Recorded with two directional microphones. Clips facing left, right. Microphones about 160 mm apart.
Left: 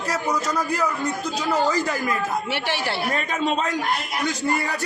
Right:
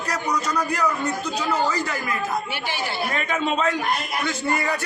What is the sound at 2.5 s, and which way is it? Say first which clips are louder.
Speech: left 3 dB; 75° left (ahead or behind).